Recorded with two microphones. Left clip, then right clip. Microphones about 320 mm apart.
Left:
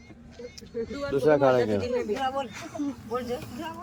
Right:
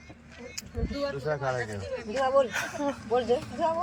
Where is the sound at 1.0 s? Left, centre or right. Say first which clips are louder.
Left 7 dB; left.